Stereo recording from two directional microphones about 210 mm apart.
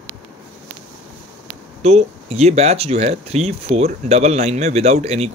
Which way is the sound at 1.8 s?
30° right (ahead or behind).